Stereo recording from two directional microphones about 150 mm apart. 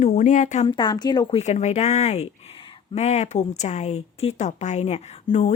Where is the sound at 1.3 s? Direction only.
50° left (ahead or behind).